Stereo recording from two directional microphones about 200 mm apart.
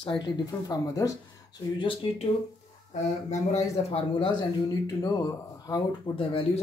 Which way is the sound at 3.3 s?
35° left (ahead or behind).